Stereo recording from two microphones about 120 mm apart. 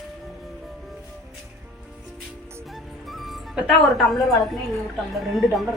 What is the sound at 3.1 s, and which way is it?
Speech, centre (ahead or behind).